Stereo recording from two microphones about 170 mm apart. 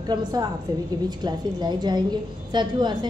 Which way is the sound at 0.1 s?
25° right (ahead or behind).